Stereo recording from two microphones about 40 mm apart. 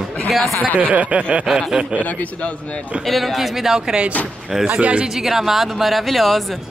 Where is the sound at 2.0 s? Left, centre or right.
Left.